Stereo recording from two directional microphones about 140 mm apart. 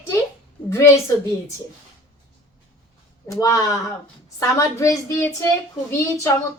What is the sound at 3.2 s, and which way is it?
A child's voice, 25° left (ahead or behind).